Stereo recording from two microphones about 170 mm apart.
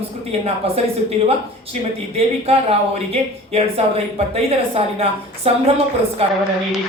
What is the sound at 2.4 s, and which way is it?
Speech, 35° right (ahead or behind).